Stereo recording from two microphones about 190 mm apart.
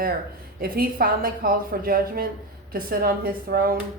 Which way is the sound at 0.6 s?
50° right (ahead or behind).